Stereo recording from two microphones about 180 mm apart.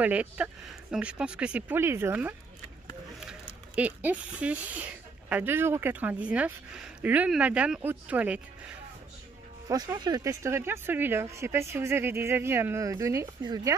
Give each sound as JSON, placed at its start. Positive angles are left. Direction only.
{"t": 0.0, "sound": "speech", "side_deg": -5}
{"t": 3.2, "sound": "a sound", "side_deg": -5}
{"t": 5.3, "sound": "speech", "side_deg": -10}
{"t": 9.7, "sound": "speech", "side_deg": -20}